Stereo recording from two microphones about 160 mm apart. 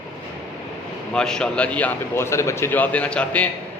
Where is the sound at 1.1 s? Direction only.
5° left (ahead or behind).